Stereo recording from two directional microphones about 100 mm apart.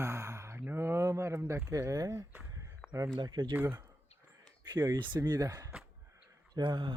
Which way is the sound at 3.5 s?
25° right (ahead or behind).